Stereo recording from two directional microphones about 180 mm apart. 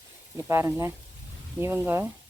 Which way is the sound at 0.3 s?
15° right (ahead or behind).